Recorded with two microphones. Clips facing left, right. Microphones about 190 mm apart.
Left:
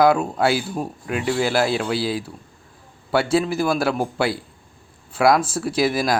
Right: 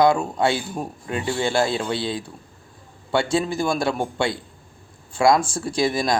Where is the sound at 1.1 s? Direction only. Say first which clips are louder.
Left 2 dB; 30° right (ahead or behind).